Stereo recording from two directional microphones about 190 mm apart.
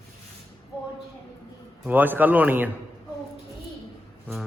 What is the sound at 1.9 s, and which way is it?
Speech, 10° right (ahead or behind).